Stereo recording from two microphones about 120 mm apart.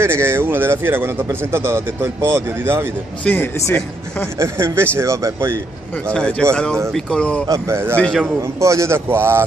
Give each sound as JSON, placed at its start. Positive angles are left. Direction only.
{"t": 0.0, "sound": "speech", "side_deg": -20}
{"t": 3.3, "sound": "speech", "side_deg": 20}
{"t": 4.4, "sound": "speech", "side_deg": -20}
{"t": 6.1, "sound": "speech", "side_deg": 10}
{"t": 7.4, "sound": "speech", "side_deg": -25}
{"t": 8.0, "sound": "a man's voice", "side_deg": 5}
{"t": 8.4, "sound": "speech", "side_deg": -25}